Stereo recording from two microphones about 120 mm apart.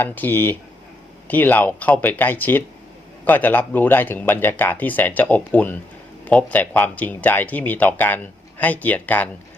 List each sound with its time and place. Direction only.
0.0 s speech: 15° left (ahead or behind)